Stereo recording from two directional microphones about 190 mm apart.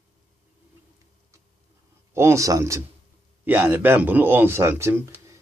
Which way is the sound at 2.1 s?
15° right (ahead or behind).